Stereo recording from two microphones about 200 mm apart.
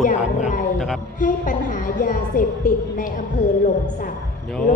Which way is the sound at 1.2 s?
40° left (ahead or behind).